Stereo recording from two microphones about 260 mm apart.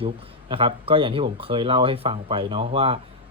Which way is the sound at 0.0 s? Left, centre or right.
Centre.